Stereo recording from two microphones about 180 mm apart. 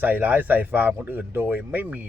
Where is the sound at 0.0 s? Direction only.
10° right (ahead or behind).